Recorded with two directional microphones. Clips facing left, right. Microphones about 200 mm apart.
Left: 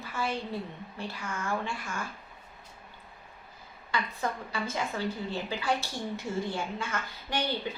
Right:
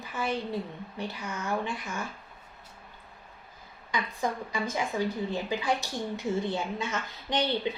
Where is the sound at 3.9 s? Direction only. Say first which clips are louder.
Right 1 dB; 15° right (ahead or behind).